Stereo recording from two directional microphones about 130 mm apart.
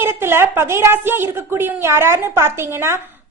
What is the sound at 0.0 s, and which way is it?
A woman's voice, 20° right (ahead or behind).